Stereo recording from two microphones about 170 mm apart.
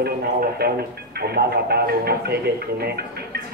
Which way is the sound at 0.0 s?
65° right (ahead or behind).